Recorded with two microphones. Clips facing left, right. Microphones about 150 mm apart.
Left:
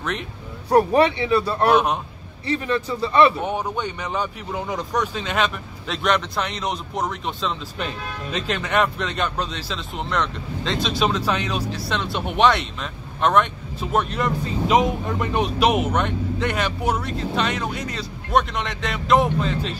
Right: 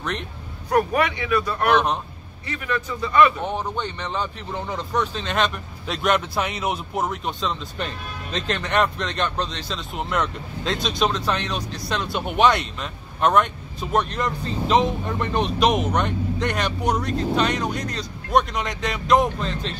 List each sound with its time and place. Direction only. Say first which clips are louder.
0.7 s speech: left 4 dB; 30° left (ahead or behind)
3.3 s speech: left 2 dB; 10° left (ahead or behind)